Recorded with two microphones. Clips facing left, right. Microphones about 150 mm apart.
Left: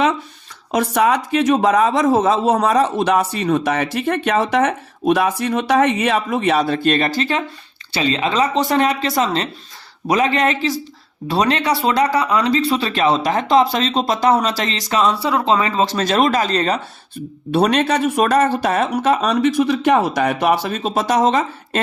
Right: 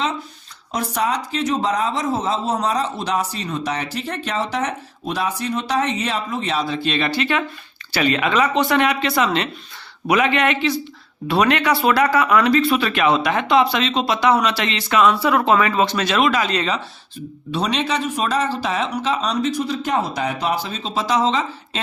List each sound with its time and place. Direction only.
0.9 s a man's voice: 65° left (ahead or behind); by 16.8 s 40° left (ahead or behind)
17.5 s a man's voice: 55° left (ahead or behind)
18.9 s speech: 90° left
19.1 s speech: 55° left (ahead or behind)
19.5 s speech: 90° left; by 21.8 s 55° left (ahead or behind)